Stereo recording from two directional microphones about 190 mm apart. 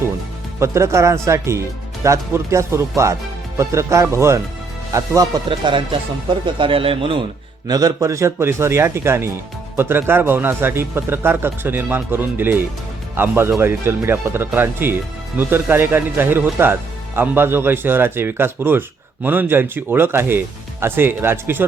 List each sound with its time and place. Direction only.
0.6 s a man's voice: 15° right (ahead or behind)
7.7 s a man's voice: 20° right (ahead or behind)